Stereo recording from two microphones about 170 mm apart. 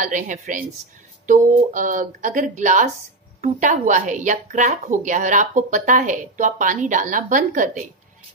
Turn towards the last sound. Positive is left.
turn(degrees=-50)  # may be behind; listen again after turning